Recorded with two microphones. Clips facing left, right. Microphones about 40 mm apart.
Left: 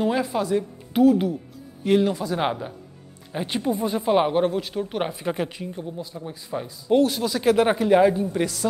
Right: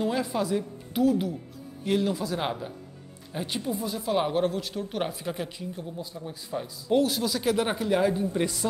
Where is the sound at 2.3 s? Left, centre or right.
Left.